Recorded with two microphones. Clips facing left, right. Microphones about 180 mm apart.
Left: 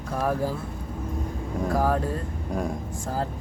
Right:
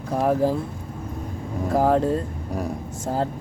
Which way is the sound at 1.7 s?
25° right (ahead or behind).